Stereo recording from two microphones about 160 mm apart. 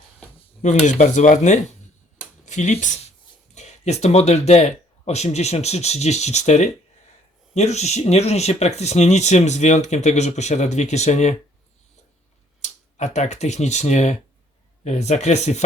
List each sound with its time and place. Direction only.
0.6 s speech: 50° left (ahead or behind)
12.6 s speech: 45° left (ahead or behind)